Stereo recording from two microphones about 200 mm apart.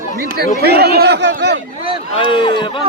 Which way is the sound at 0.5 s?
50° right (ahead or behind).